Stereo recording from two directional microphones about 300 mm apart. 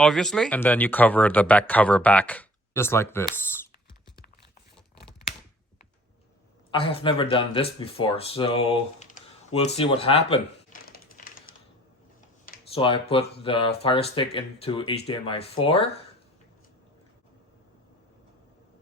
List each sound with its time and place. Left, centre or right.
0.0 s speech: centre
6.7 s speech: centre
10.8 s typewriter: left
11.5 s typing: left
12.7 s speech: centre